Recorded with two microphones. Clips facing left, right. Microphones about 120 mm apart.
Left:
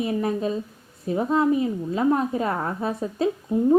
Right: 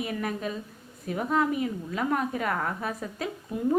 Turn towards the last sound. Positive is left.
turn(degrees=25)  # may be behind; listen again after turning